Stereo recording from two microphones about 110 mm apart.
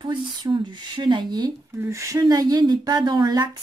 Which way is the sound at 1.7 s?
25° right (ahead or behind).